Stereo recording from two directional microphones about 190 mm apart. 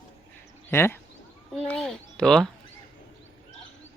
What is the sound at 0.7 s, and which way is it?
Speech, 10° left (ahead or behind).